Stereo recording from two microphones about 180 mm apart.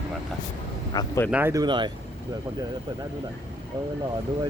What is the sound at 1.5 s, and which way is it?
Speech, 25° right (ahead or behind).